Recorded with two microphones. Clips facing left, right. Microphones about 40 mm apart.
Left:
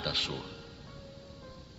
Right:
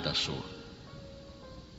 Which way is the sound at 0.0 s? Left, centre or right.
Centre.